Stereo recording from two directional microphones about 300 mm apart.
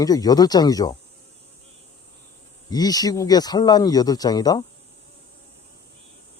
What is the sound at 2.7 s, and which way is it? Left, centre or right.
Speech, centre.